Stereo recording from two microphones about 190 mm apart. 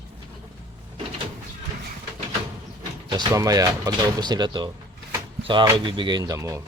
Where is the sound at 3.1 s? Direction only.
20° right (ahead or behind).